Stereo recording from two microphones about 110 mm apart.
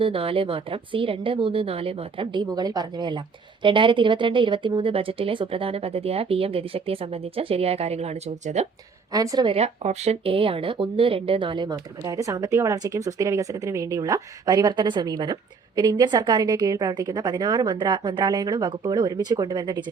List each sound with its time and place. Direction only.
0.0 s speech: 55° right (ahead or behind); by 8.6 s 80° right
9.1 s speech: 35° right (ahead or behind)
9.5 s speech: 75° right (ahead or behind); by 19.8 s 40° right (ahead or behind)